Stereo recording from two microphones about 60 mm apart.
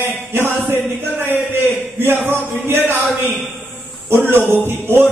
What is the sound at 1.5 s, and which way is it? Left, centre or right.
A man's voice, right.